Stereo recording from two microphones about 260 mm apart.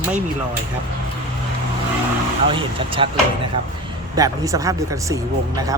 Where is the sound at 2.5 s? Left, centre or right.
Right.